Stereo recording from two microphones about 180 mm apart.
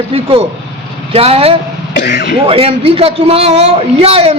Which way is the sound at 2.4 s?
30° right (ahead or behind).